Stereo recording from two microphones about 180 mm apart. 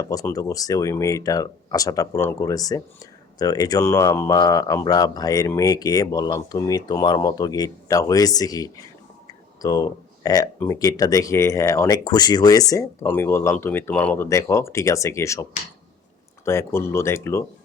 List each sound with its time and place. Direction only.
0.0 s speech: 20° left (ahead or behind)